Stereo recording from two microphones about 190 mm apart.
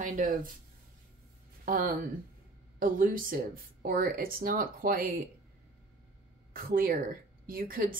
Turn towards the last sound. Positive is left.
turn(degrees=-50)  # may be behind; listen again after turning